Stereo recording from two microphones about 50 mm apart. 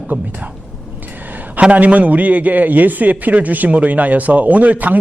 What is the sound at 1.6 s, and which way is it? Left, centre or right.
A man's voice, right.